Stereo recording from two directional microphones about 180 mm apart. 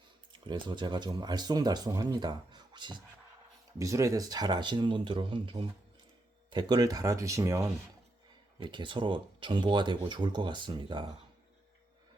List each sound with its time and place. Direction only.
0.3 s speech: 25° right (ahead or behind)
8.5 s speech: 25° right (ahead or behind)